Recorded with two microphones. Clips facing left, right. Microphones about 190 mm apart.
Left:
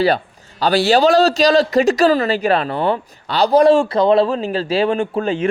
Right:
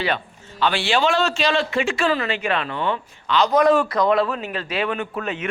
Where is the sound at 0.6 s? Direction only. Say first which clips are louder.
Left 7 dB; 40° left (ahead or behind).